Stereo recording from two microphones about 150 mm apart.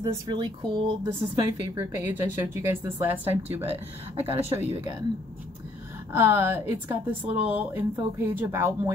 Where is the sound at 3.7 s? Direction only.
40° right (ahead or behind).